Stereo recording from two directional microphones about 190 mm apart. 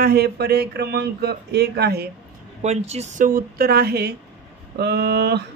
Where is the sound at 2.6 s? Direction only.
35° right (ahead or behind).